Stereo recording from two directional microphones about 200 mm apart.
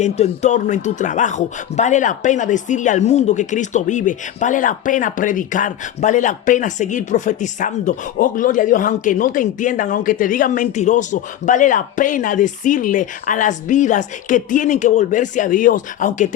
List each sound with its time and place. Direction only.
0.0 s speech: 35° left (ahead or behind)